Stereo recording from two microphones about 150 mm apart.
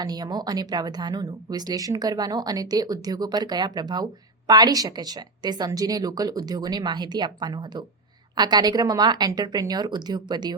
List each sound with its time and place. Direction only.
0.0 s speech: 25° right (ahead or behind)